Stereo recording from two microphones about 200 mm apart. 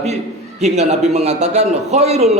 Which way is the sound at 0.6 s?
35° right (ahead or behind).